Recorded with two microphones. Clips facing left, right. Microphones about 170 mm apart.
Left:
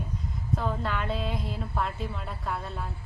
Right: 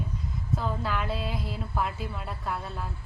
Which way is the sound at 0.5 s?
5° right (ahead or behind).